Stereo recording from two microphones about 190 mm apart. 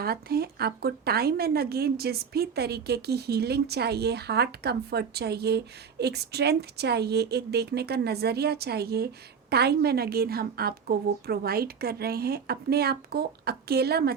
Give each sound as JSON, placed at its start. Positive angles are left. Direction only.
{"t": 0.0, "sound": "a woman's voice", "side_deg": -55}